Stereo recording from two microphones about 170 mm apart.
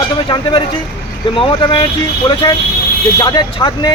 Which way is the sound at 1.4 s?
30° left (ahead or behind).